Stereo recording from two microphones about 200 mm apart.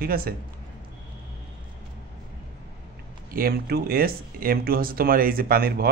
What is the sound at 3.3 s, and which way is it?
Speech, 50° right (ahead or behind).